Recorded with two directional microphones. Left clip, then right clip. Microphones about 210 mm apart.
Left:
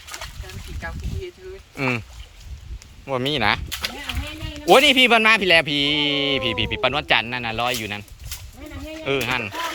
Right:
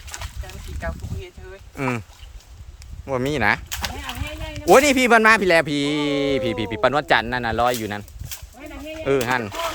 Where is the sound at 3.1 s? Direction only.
15° right (ahead or behind).